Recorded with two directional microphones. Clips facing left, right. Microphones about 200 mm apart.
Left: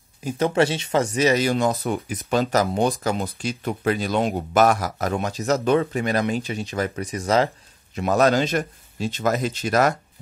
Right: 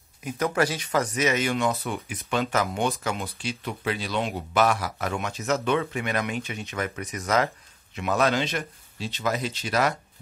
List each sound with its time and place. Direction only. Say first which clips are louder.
0.2 s speech: left 5 dB; 30° left (ahead or behind); by 9.9 s 45° left (ahead or behind)